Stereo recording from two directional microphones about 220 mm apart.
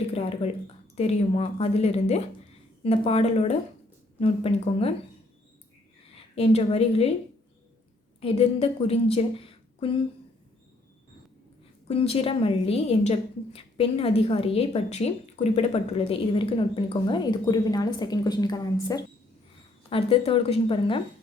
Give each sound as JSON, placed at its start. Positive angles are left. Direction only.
{"t": 0.1, "sound": "a sound", "side_deg": 25}
{"t": 0.9, "sound": "a woman's voice", "side_deg": 30}
{"t": 6.3, "sound": "a woman's voice", "side_deg": 25}
{"t": 8.2, "sound": "a woman's voice", "side_deg": 25}
{"t": 11.9, "sound": "a woman's voice", "side_deg": 25}